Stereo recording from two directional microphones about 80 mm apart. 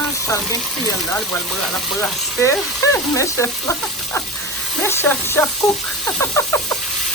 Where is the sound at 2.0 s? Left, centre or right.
Left.